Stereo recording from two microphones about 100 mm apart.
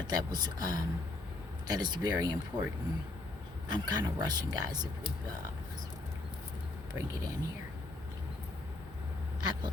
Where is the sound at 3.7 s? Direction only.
45° right (ahead or behind).